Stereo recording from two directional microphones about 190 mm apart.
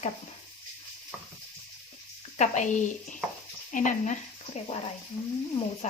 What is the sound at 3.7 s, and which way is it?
Speech, 40° left (ahead or behind).